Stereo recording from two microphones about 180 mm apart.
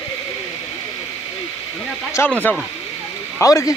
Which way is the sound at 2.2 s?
15° left (ahead or behind).